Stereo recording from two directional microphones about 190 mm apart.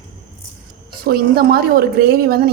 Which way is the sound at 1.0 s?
55° right (ahead or behind).